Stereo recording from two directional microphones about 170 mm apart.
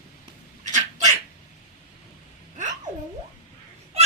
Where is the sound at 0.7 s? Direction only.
45° right (ahead or behind).